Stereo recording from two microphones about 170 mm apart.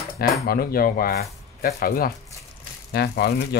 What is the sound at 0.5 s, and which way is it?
Speech, 60° left (ahead or behind).